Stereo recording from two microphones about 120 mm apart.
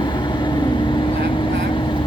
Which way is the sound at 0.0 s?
40° left (ahead or behind).